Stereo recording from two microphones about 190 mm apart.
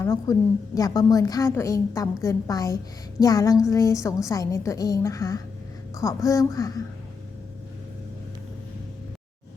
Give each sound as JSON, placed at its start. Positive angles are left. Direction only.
{"t": 0.0, "sound": "a woman's voice", "side_deg": 15}